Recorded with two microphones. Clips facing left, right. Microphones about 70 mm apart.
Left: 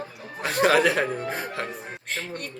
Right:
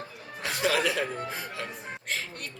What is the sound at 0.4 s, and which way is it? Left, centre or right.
Speech, left.